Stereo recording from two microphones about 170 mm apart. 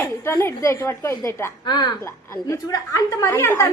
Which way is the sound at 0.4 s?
15° left (ahead or behind).